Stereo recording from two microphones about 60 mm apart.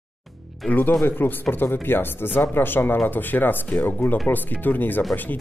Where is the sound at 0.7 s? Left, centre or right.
Left.